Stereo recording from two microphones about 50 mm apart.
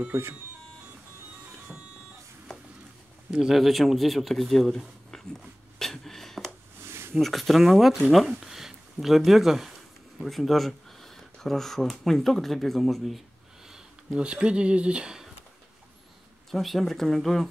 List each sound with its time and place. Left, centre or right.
0.1 s speech: right
1.7 s printer: centre
3.3 s speech: centre
3.5 s speech: centre
5.8 s a sound: centre
6.9 s a sound: right
7.2 s speech: centre
13.7 s speech: centre
16.4 s speech: centre